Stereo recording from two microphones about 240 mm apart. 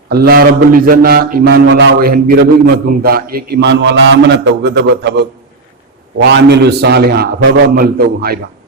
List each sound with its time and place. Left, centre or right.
0.1 s a man's voice: right